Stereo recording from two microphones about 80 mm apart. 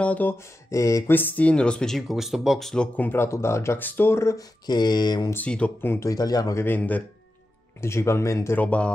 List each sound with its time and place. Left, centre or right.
0.0 s a man's voice: left
0.4 s speech: left
1.1 s speech: left; by 2.7 s centre
3.0 s speech: left
4.4 s a sound: left
5.3 s a man's voice: centre
6.0 s speech: left
6.5 s a man's voice: left
7.8 s speech: left
8.5 s speech: centre